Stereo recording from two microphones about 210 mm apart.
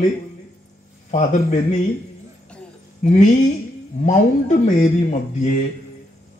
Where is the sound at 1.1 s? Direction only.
35° left (ahead or behind).